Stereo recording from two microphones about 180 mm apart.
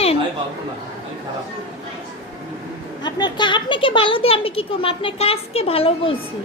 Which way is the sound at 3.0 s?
25° left (ahead or behind).